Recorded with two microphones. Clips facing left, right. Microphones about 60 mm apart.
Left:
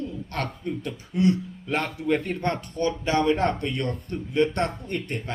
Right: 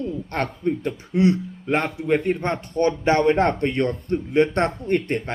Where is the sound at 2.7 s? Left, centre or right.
Right.